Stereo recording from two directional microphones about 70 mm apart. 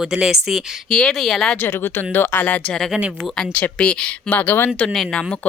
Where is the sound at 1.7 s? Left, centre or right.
Left.